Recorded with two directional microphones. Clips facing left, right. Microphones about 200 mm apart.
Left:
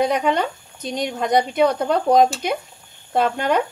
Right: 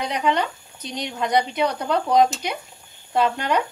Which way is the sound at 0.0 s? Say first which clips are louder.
Left 4 dB; 50° left (ahead or behind).